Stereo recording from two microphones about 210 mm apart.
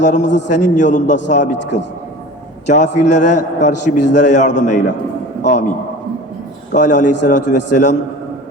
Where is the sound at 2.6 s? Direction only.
35° left (ahead or behind).